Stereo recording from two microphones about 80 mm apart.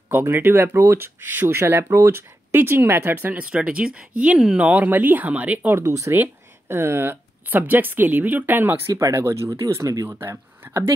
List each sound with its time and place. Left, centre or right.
0.1 s speech: right
3.5 s speech: centre
5.8 s speech: right
10.0 s speech: right